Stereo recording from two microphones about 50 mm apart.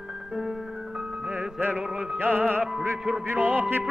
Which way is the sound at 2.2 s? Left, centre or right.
Right.